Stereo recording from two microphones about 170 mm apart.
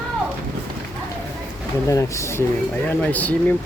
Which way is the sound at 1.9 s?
20° left (ahead or behind).